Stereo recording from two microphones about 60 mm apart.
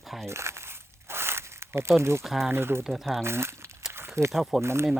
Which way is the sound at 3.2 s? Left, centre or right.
Right.